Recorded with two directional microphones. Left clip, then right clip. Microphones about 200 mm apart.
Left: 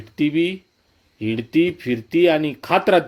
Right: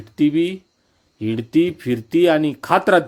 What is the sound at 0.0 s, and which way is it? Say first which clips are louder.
Speech: right 2 dB; 5° right (ahead or behind).